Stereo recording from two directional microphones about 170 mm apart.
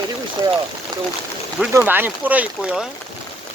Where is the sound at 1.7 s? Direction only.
10° right (ahead or behind).